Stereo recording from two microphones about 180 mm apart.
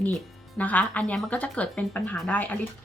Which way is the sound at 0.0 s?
10° left (ahead or behind).